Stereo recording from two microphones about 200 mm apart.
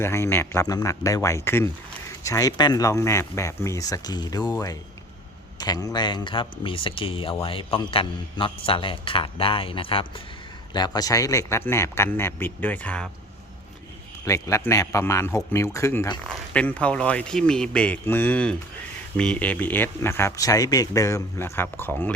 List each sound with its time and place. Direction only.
0.0 s speech: 15° left (ahead or behind)
14.3 s speech: 15° left (ahead or behind)